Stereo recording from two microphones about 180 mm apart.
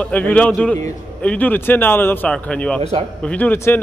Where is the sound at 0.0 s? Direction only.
10° left (ahead or behind).